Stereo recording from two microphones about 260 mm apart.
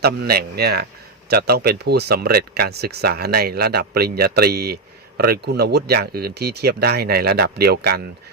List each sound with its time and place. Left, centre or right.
0.0 s speech: right